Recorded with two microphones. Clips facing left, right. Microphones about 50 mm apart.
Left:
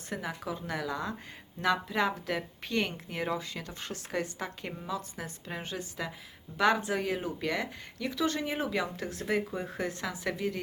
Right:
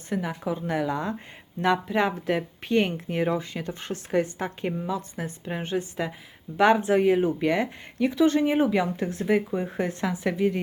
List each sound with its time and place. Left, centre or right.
0.1 s speech: centre
0.5 s speech: right